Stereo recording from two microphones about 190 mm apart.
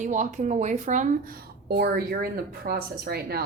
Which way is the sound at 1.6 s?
60° right (ahead or behind).